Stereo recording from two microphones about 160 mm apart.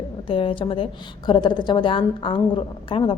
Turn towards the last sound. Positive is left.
turn(degrees=30)  # may be behind; listen again after turning